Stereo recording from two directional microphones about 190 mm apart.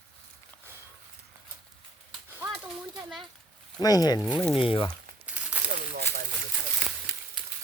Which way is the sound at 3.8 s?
20° left (ahead or behind).